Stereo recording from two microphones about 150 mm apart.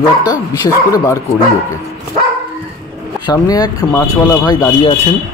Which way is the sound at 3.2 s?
30° left (ahead or behind).